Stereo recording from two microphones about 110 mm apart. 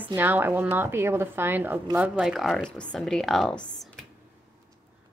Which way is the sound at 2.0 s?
5° right (ahead or behind).